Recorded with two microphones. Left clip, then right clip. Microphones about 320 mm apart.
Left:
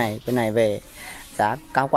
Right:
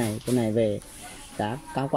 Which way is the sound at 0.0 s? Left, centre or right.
Left.